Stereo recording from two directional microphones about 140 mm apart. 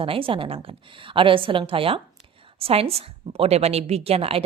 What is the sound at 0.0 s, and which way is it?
A woman's voice, 40° right (ahead or behind).